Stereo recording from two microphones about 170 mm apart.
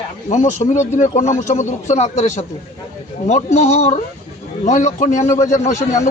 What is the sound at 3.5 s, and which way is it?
A man's voice, 40° left (ahead or behind).